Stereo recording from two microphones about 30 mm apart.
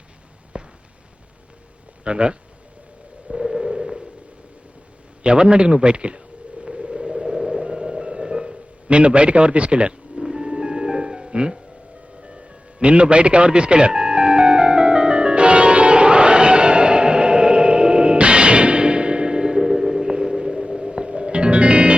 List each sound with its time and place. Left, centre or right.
0.5 s a sound: right
2.0 s a man's voice: right
3.3 s radio: centre
5.2 s a man's voice: right
6.7 s music: right
8.9 s a man's voice: right
10.2 s music: centre
12.8 s a man's voice: right
13.9 s music: right